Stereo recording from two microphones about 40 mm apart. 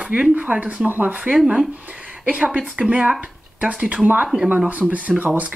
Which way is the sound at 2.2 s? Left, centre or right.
Right.